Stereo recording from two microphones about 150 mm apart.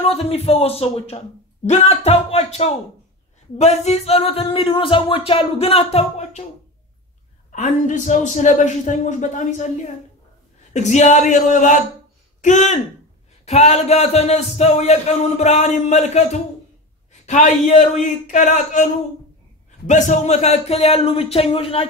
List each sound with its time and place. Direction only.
0.0 s a man's voice: 40° left (ahead or behind)
3.5 s a sound: 45° left (ahead or behind)
7.5 s a man's voice: 55° left (ahead or behind)
10.7 s a man's voice: 50° left (ahead or behind)
19.9 s a man's voice: 50° left (ahead or behind)